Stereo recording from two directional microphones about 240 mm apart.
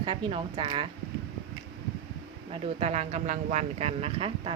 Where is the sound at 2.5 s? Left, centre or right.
Right.